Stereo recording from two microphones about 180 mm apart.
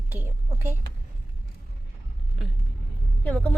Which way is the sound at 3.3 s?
10° left (ahead or behind).